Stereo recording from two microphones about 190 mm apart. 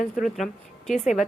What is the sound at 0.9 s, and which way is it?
Speech, 40° left (ahead or behind).